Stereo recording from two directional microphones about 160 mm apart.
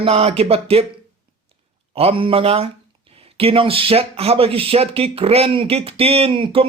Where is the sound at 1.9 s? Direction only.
35° right (ahead or behind).